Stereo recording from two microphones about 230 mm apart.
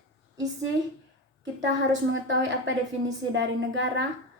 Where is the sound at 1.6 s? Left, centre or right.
Right.